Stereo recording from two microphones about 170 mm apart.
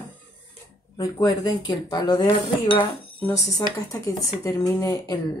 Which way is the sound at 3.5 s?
20° left (ahead or behind).